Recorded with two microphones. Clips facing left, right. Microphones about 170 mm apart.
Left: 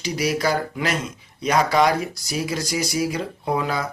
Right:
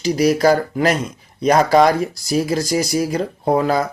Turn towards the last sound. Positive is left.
turn(degrees=-40)  # may be behind; listen again after turning